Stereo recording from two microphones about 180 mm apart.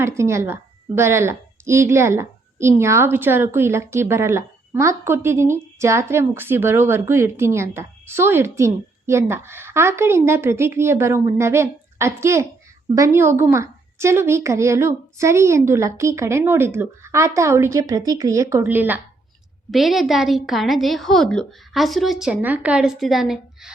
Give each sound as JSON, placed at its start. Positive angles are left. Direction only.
{"t": 0.2, "sound": "a woman's voice", "side_deg": -15}